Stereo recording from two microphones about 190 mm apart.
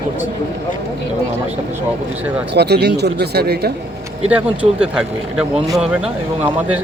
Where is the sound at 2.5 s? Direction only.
60° right (ahead or behind).